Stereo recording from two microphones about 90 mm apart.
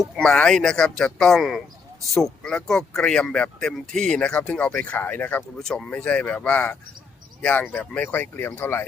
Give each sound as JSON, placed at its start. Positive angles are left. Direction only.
{"t": 0.2, "sound": "speech", "side_deg": 10}
{"t": 5.5, "sound": "speech", "side_deg": 5}